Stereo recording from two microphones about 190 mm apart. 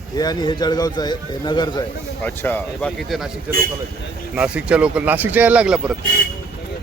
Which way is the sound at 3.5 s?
10° right (ahead or behind).